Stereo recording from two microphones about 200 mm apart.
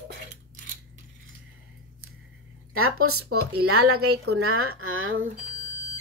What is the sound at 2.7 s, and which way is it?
Speech, 90° right.